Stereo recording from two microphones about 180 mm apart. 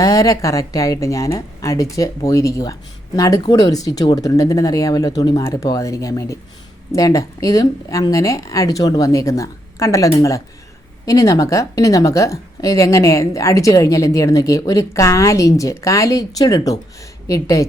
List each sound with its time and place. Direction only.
0.0 s a woman's voice: 20° left (ahead or behind)